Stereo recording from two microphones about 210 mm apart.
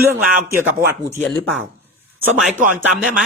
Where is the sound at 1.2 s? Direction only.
Centre (ahead or behind).